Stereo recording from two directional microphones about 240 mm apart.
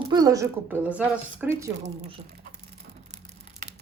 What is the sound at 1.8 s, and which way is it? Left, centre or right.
Speech, right.